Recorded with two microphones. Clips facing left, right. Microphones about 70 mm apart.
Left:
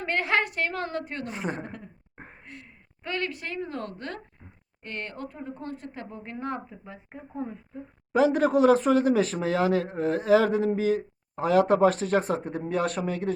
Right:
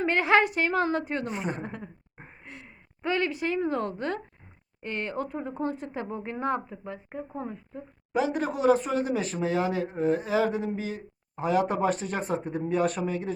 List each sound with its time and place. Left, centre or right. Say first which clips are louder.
0.0 s a woman's voice: right 4 dB; centre
8.4 s speech: left 1 dB; left
11.4 s speech: left 5 dB; left
12.5 s speech: right 1 dB; left